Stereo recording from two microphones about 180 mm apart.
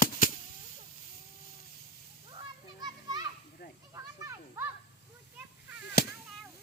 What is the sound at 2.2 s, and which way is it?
Children playing, 25° right (ahead or behind).